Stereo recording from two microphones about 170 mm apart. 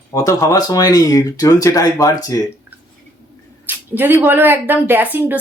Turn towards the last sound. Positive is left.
turn(degrees=-10)  # may be behind; listen again after turning